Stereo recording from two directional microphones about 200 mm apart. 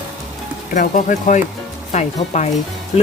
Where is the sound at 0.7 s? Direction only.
40° left (ahead or behind).